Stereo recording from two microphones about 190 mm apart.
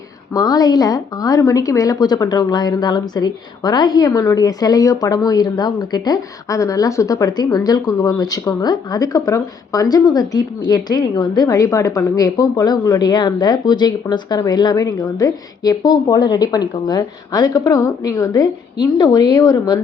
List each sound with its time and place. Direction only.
0.3 s a woman's voice: 20° left (ahead or behind)